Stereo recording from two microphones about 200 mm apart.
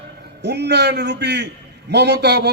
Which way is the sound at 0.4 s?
60° right (ahead or behind).